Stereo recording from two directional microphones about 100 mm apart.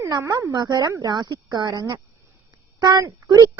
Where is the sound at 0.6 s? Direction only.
45° right (ahead or behind).